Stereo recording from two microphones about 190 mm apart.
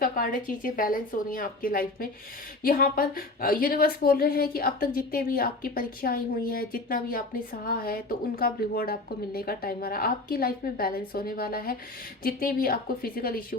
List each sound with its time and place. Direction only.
0.0 s a woman's voice: 50° left (ahead or behind)